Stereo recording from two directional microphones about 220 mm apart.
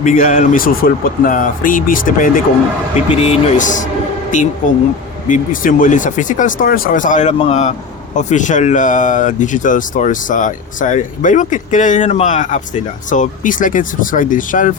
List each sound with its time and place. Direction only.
0.0 s speech: 35° left (ahead or behind)